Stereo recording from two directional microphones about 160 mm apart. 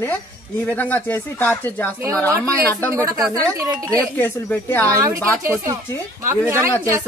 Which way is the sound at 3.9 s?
10° left (ahead or behind).